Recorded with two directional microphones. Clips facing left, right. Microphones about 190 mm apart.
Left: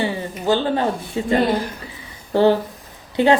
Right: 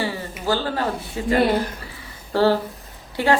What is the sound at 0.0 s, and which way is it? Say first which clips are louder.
A woman's voice: left 3 dB; 20° left (ahead or behind).